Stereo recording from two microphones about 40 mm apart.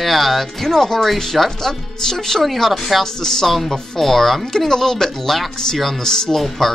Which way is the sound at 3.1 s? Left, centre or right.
Centre.